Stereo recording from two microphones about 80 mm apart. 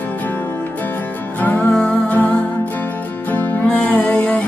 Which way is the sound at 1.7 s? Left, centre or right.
Centre.